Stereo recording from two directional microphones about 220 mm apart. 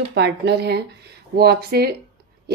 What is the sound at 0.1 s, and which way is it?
A woman's voice, 50° right (ahead or behind).